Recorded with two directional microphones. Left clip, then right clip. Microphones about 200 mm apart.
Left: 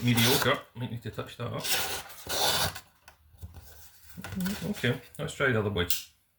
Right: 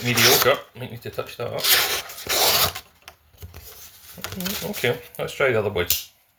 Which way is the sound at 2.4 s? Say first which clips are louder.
Right 7 dB; 25° right (ahead or behind).